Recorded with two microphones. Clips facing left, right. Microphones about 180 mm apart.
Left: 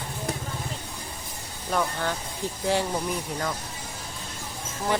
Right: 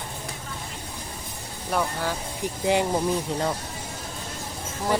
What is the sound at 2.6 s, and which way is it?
Speech, 15° right (ahead or behind).